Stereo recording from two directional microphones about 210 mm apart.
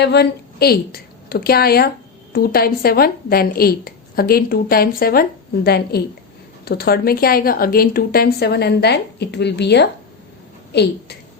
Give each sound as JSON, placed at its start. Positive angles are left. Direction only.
{"t": 0.0, "sound": "a woman's voice", "side_deg": 50}